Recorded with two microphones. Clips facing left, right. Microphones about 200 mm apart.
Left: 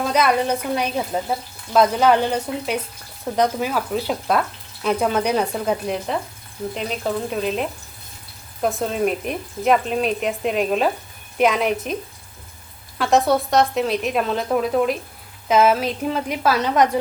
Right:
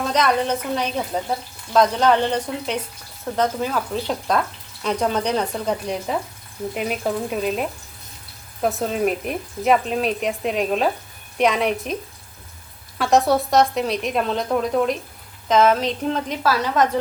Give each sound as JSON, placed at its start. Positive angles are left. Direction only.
{"t": 0.0, "sound": "speech", "side_deg": 10}
{"t": 6.7, "sound": "speech", "side_deg": -10}
{"t": 13.0, "sound": "speech", "side_deg": 0}